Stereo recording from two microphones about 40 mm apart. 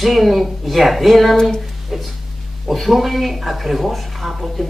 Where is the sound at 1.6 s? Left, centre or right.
Centre.